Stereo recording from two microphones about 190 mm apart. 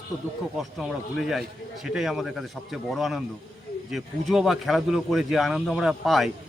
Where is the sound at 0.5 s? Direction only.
Centre (ahead or behind).